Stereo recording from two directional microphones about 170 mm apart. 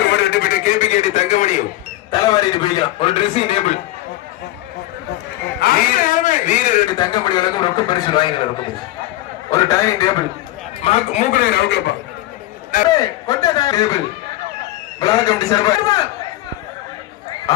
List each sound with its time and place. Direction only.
0.0 s a sound: 90° left; by 1.5 s 45° left (ahead or behind)
2.0 s a man's voice: 20° left (ahead or behind); by 3.8 s 40° left (ahead or behind)
5.5 s a sound: 60° left (ahead or behind)
6.9 s a man's voice: 25° left (ahead or behind)
10.8 s a man's voice: 40° left (ahead or behind); by 11.9 s 85° left
12.9 s a man's voice: 20° left (ahead or behind)
15.0 s a man's voice: 20° left (ahead or behind)